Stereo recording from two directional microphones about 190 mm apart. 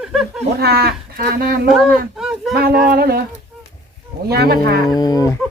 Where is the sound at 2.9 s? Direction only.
50° right (ahead or behind).